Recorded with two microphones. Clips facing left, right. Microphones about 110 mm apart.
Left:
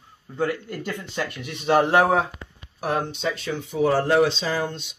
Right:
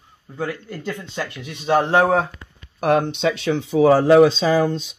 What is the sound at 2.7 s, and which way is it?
Speech, 65° right (ahead or behind).